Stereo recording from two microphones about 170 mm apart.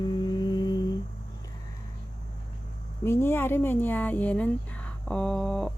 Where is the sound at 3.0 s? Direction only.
15° left (ahead or behind).